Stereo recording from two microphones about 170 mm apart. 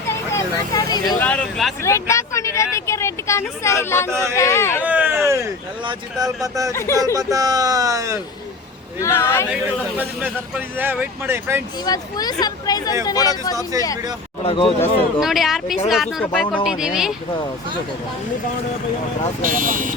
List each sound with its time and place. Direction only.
0.3 s vehicle: 20° left (ahead or behind)
1.2 s speech: 5° left (ahead or behind)
1.8 s speech: 15° left (ahead or behind)
4.8 s a sound: 10° right (ahead or behind)
5.8 s speech: 25° right (ahead or behind)
6.7 s speech: 15° left (ahead or behind)
7.0 s speech: 20° right (ahead or behind)
9.0 s speech: 15° left (ahead or behind)
10.0 s speech: 10° right (ahead or behind)
11.9 s speech: 20° left (ahead or behind)
14.4 s speech: 30° left (ahead or behind)
15.2 s speech: centre (ahead or behind)
19.5 s speech: 50° right (ahead or behind)